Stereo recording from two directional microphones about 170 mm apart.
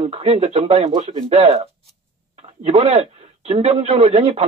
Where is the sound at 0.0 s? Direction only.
40° right (ahead or behind).